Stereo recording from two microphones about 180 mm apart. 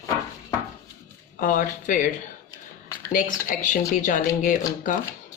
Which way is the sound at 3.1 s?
45° left (ahead or behind).